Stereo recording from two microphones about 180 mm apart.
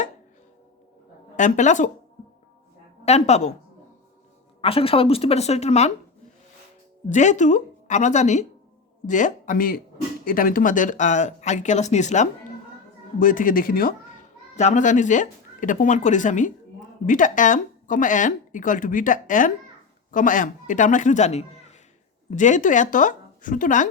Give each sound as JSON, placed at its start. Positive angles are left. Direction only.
{"t": 1.4, "sound": "speech", "side_deg": 40}
{"t": 3.0, "sound": "speech", "side_deg": 35}
{"t": 4.6, "sound": "speech", "side_deg": 30}
{"t": 7.1, "sound": "speech", "side_deg": 40}
{"t": 14.5, "sound": "speech", "side_deg": 40}